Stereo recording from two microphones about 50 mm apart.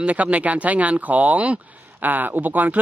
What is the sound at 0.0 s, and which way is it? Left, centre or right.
A man's voice, right.